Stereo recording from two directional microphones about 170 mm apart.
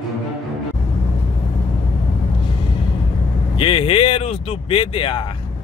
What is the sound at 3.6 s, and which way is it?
Speech, 30° left (ahead or behind).